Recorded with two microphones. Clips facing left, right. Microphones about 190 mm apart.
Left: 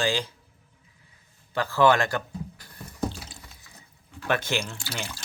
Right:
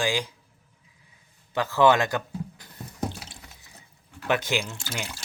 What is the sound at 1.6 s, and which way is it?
A man's voice, 20° right (ahead or behind).